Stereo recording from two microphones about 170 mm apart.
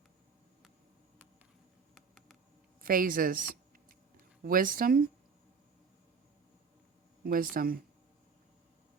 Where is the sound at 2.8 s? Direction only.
55° right (ahead or behind).